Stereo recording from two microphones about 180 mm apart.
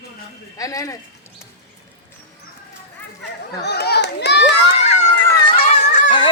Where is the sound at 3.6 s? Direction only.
65° left (ahead or behind).